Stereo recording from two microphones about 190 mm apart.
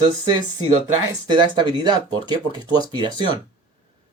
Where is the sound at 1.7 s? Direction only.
20° right (ahead or behind).